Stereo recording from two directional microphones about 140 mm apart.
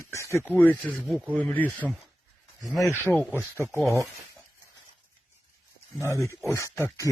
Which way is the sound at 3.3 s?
20° right (ahead or behind).